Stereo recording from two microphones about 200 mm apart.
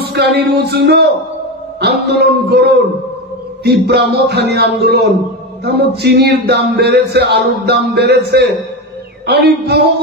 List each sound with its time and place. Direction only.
0.0 s speech: 55° right (ahead or behind)